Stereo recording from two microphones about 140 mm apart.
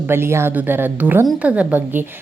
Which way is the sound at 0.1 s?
15° right (ahead or behind).